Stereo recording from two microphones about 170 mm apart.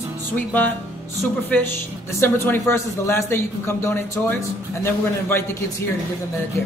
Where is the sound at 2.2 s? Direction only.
15° left (ahead or behind).